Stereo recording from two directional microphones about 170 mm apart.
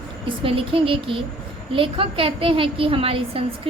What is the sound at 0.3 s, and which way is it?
A woman's voice, 35° right (ahead or behind).